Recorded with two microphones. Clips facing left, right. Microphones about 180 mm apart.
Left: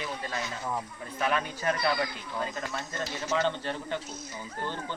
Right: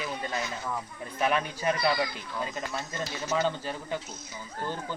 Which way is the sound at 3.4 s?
10° right (ahead or behind).